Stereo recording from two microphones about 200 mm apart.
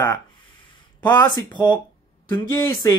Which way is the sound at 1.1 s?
20° left (ahead or behind).